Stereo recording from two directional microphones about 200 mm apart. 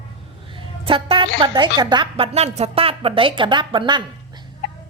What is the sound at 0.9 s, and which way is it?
A woman's voice, 25° right (ahead or behind).